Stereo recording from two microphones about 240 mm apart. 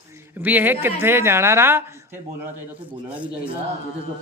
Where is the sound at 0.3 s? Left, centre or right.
Centre.